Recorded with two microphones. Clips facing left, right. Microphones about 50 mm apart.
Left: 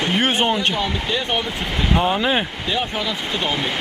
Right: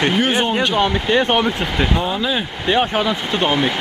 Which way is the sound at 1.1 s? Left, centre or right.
Right.